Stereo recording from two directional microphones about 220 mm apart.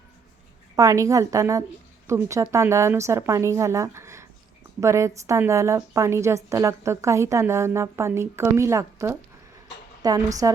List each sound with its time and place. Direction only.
0.8 s a woman's voice: 15° right (ahead or behind)